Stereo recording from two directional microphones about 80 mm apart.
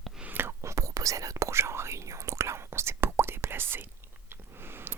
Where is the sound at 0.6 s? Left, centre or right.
Right.